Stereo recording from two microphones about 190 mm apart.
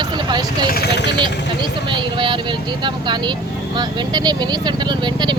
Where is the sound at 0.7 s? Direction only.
55° left (ahead or behind).